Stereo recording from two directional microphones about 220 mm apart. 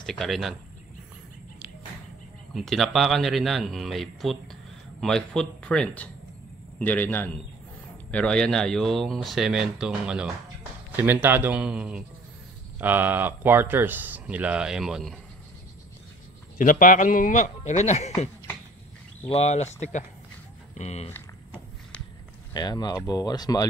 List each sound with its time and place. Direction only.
0.0 s speech: centre (ahead or behind)
2.5 s speech: centre (ahead or behind)
16.5 s a man's voice: 35° left (ahead or behind)
22.5 s speech: 20° left (ahead or behind)